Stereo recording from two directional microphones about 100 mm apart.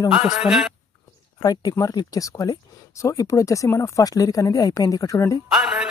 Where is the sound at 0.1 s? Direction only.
5° right (ahead or behind).